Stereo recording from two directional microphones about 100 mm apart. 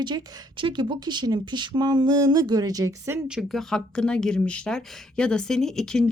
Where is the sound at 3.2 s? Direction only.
5° right (ahead or behind).